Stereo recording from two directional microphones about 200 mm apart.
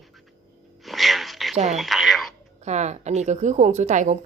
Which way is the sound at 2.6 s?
35° right (ahead or behind).